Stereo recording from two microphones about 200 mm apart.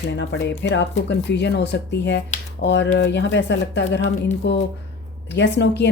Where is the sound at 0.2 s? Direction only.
60° left (ahead or behind).